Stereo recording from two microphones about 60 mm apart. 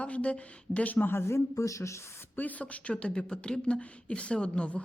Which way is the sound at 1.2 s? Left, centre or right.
Left.